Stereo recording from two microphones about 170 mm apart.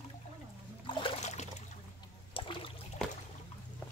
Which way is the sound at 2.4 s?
30° left (ahead or behind).